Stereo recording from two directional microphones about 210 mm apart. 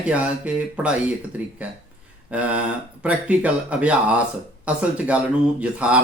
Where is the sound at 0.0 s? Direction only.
5° right (ahead or behind).